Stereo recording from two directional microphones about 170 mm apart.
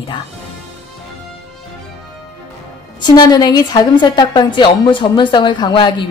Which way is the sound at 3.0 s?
25° left (ahead or behind).